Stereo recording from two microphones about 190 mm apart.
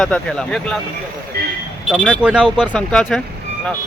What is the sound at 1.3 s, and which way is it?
Speech, 55° right (ahead or behind).